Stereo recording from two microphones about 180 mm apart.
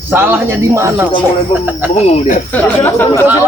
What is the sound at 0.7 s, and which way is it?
Speech, 15° right (ahead or behind).